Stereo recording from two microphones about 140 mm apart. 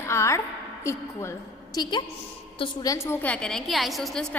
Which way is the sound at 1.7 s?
30° left (ahead or behind).